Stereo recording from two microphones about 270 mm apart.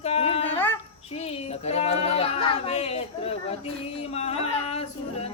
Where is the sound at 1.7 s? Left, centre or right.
Left.